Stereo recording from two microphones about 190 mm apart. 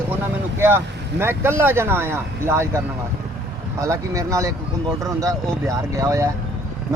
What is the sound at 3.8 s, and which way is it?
Speech, 15° right (ahead or behind).